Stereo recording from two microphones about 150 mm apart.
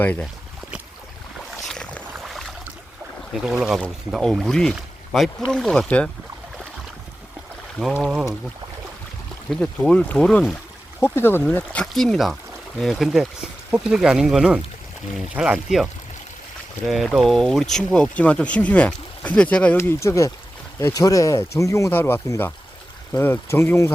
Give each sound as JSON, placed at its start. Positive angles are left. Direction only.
{"t": 0.0, "sound": "speech", "side_deg": 10}
{"t": 1.6, "sound": "boat", "side_deg": 5}
{"t": 3.3, "sound": "speech", "side_deg": 0}
{"t": 7.8, "sound": "speech", "side_deg": 0}
{"t": 9.5, "sound": "speech", "side_deg": 5}
{"t": 11.0, "sound": "speech", "side_deg": 15}